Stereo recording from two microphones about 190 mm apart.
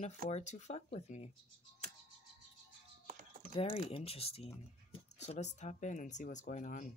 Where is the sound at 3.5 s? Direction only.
30° left (ahead or behind).